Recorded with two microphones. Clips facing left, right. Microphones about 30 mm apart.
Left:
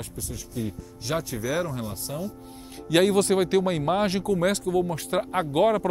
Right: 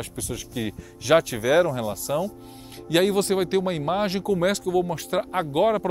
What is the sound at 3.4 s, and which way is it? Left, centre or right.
Speech, right.